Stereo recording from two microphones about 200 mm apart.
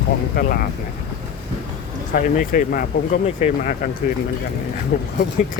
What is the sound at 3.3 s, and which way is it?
Music, 35° left (ahead or behind).